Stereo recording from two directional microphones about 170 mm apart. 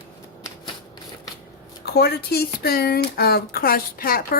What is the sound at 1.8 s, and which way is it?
Speech, 65° left (ahead or behind).